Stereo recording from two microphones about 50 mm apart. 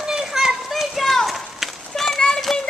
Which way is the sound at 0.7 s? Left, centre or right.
Centre.